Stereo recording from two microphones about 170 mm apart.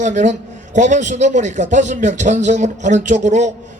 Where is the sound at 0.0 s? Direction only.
45° right (ahead or behind).